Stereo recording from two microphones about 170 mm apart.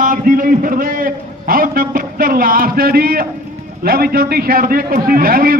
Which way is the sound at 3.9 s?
65° right (ahead or behind).